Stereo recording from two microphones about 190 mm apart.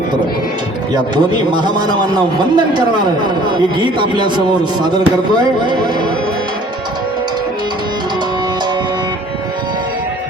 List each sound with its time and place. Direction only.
0.9 s a man's voice: 25° right (ahead or behind)